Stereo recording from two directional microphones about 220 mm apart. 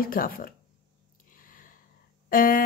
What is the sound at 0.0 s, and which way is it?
Speech, 40° left (ahead or behind).